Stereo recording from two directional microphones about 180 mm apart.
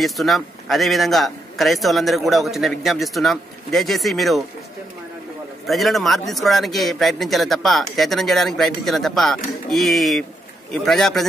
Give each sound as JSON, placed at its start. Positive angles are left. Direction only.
{"t": 0.0, "sound": "a man's voice", "side_deg": 0}
{"t": 5.7, "sound": "a man's voice", "side_deg": 0}